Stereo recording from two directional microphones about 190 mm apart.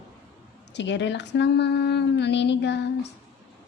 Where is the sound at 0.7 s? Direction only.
70° left (ahead or behind).